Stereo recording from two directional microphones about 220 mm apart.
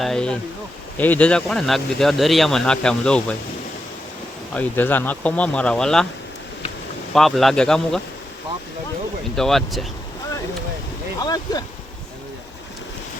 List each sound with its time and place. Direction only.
0.0 s speech: 5° left (ahead or behind)
4.5 s speech: 10° left (ahead or behind)
7.1 s speech: centre (ahead or behind)
9.3 s speech: centre (ahead or behind)
11.2 s a sound: 15° left (ahead or behind)